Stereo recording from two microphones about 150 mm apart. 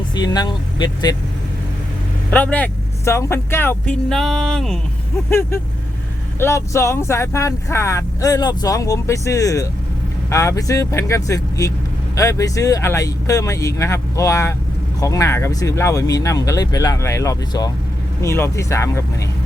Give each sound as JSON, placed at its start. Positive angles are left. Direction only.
{"t": 0.1, "sound": "speech", "side_deg": 30}
{"t": 2.3, "sound": "speech", "side_deg": 10}
{"t": 4.1, "sound": "music", "side_deg": 0}
{"t": 6.4, "sound": "speech", "side_deg": 20}